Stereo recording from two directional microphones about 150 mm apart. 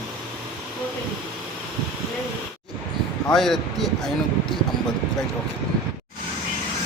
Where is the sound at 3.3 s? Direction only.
Centre (ahead or behind).